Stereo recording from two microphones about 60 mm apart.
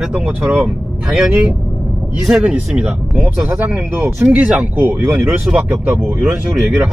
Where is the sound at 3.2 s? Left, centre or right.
Right.